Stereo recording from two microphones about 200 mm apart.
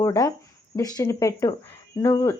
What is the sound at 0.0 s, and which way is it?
A woman's voice, 15° left (ahead or behind).